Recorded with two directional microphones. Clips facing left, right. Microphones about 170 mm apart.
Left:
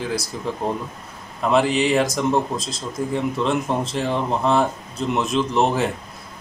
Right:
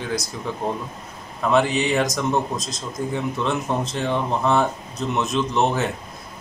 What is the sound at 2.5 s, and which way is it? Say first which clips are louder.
Speech: left 1 dB; 30° left (ahead or behind).